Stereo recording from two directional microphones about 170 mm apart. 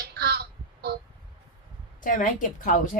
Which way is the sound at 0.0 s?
70° right (ahead or behind).